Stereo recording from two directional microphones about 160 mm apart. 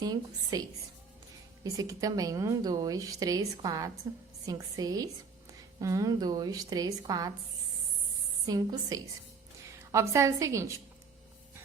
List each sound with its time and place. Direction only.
0.0 s a sound: 25° right (ahead or behind)
1.6 s a woman's voice: 20° right (ahead or behind)
8.4 s a woman's voice: 25° right (ahead or behind)